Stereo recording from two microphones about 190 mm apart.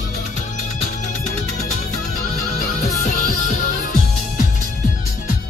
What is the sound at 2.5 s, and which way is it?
Music, 40° left (ahead or behind).